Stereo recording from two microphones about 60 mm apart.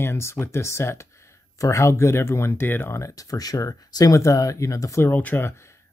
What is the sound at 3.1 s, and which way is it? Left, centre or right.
Speech, left.